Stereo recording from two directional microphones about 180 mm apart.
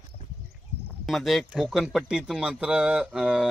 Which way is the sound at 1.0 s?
Centre (ahead or behind).